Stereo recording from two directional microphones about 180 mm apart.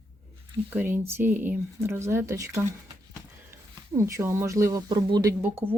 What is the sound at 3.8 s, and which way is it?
Speech, 15° right (ahead or behind).